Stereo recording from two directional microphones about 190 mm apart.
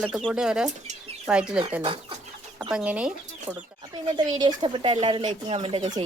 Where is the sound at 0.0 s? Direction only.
Centre (ahead or behind).